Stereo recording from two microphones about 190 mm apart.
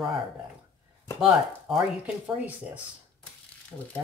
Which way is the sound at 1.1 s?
Centre (ahead or behind).